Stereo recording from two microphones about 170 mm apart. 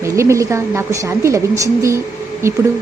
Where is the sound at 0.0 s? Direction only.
15° right (ahead or behind).